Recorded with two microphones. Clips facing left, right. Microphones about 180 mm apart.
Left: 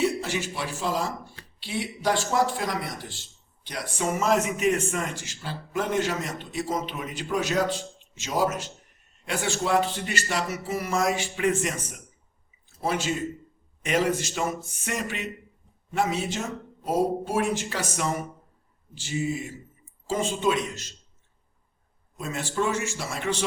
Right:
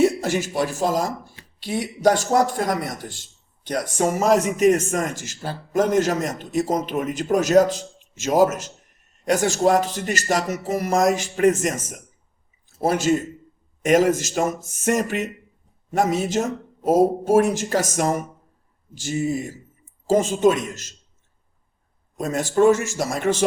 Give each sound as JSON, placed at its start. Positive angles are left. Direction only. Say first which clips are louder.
{"t": 0.0, "sound": "a man's voice", "louder": "right 7 dB", "side_deg": -45}
{"t": 22.2, "sound": "a man's voice", "louder": "right 10 dB", "side_deg": -45}